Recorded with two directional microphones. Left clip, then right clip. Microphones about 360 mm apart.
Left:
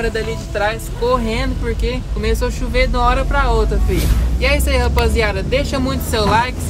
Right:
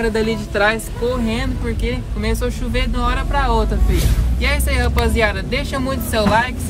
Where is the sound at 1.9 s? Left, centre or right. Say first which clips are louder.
Left 2 dB; centre.